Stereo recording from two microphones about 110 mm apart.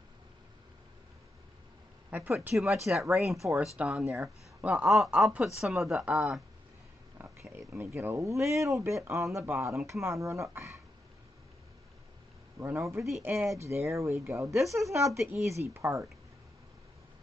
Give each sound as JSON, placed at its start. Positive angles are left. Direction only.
{"t": 2.0, "sound": "speech", "side_deg": -15}
{"t": 2.5, "sound": "speech", "side_deg": -5}
{"t": 4.8, "sound": "speech", "side_deg": 0}
{"t": 7.2, "sound": "a sound", "side_deg": -20}
{"t": 7.7, "sound": "speech", "side_deg": -20}
{"t": 12.5, "sound": "speech", "side_deg": -25}